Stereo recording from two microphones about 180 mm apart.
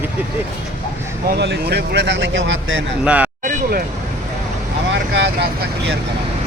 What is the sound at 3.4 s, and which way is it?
Vehicle, 45° right (ahead or behind).